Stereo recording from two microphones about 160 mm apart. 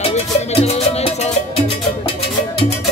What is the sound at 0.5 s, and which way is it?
Music, 40° left (ahead or behind).